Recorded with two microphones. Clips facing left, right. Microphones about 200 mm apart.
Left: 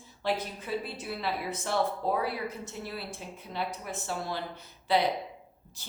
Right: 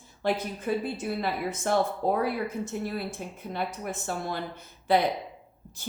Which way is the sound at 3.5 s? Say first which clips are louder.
Right 2 dB; 50° right (ahead or behind).